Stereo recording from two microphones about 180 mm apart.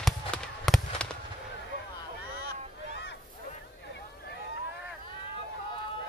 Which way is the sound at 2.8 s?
90° left.